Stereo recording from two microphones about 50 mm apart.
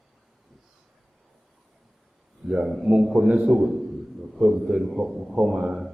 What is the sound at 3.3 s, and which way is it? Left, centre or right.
Speech, right.